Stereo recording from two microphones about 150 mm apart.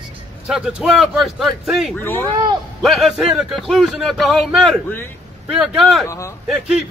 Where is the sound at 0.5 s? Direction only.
5° right (ahead or behind).